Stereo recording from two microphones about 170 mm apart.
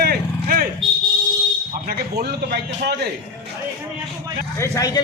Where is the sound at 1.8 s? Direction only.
65° right (ahead or behind).